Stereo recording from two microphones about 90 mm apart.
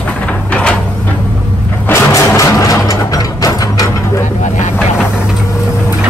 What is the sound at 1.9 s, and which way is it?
Music, 35° left (ahead or behind).